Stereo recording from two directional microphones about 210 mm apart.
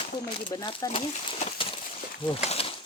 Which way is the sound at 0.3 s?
25° left (ahead or behind).